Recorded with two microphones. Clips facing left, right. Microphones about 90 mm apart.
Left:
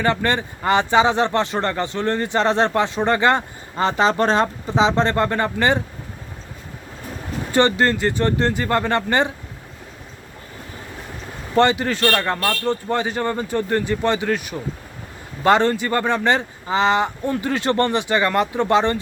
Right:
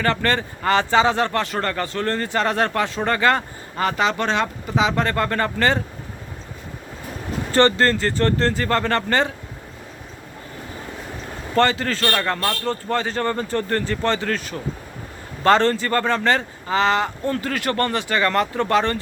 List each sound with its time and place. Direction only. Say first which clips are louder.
0.0 s speech: left 1 dB; 15° left (ahead or behind)
7.5 s speech: even; 15° left (ahead or behind)
11.5 s speech: left 2 dB; 15° left (ahead or behind)